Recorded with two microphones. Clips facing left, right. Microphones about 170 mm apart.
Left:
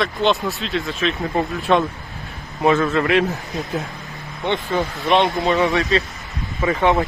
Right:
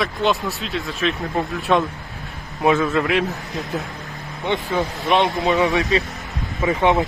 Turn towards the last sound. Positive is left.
turn(degrees=-20)  # may be behind; listen again after turning